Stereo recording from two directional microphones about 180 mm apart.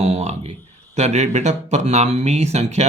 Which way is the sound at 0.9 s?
40° right (ahead or behind).